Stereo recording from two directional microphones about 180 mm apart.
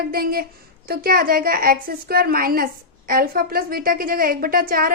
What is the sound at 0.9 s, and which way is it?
A woman's voice, 55° right (ahead or behind).